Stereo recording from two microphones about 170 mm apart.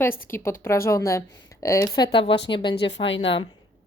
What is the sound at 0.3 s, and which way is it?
Speech, 15° left (ahead or behind).